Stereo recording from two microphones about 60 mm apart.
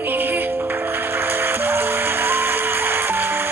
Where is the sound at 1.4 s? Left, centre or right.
Right.